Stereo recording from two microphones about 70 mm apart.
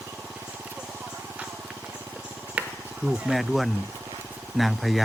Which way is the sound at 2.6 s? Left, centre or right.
Centre.